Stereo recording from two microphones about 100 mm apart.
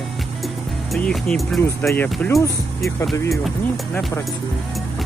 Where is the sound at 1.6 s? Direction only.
25° left (ahead or behind).